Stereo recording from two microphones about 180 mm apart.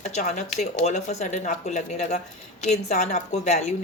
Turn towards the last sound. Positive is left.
turn(degrees=40)  # may be behind; listen again after turning